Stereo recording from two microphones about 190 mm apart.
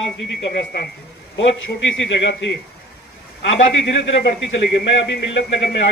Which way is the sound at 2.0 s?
70° left (ahead or behind).